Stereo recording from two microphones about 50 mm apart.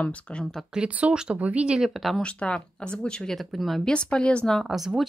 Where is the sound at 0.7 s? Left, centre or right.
Centre.